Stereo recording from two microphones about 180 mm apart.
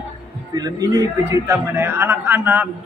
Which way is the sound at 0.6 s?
20° right (ahead or behind).